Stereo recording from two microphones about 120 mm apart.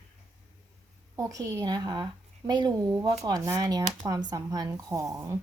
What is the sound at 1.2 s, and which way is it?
A woman's voice, 30° right (ahead or behind).